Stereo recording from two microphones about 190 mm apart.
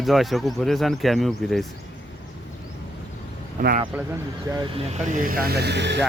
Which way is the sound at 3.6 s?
45° right (ahead or behind).